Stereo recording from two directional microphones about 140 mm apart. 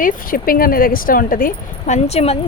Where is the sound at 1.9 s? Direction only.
50° left (ahead or behind).